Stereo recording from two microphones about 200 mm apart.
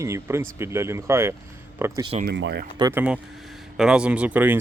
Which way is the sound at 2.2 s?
60° right (ahead or behind).